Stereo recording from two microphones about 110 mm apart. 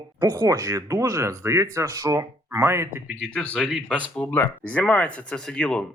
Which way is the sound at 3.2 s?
10° left (ahead or behind).